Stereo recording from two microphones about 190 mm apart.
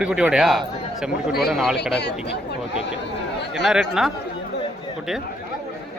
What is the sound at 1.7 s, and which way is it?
Speech, 60° left (ahead or behind).